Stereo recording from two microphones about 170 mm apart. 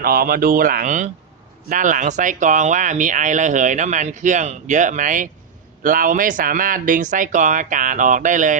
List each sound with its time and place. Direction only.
0.0 s speech: 60° right (ahead or behind)